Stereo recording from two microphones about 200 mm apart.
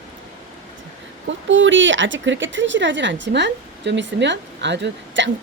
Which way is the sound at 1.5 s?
70° right (ahead or behind).